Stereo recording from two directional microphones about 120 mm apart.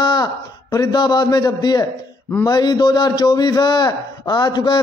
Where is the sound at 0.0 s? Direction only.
35° left (ahead or behind).